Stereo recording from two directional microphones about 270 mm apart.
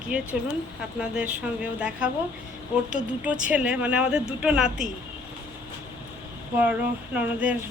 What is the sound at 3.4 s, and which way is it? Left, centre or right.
A woman's voice, centre.